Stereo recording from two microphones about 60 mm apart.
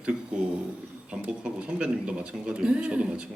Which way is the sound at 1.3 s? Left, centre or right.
Centre.